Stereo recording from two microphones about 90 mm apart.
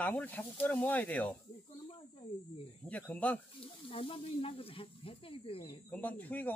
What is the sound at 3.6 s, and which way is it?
Speech, 90° left.